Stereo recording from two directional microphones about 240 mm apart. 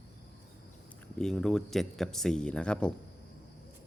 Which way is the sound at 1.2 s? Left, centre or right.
Centre.